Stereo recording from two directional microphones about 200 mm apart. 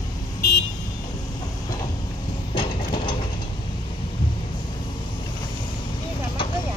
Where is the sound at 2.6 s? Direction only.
25° left (ahead or behind).